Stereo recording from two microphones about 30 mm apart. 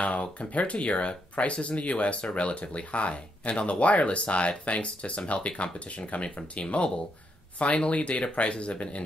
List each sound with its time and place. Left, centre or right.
0.0 s speech: left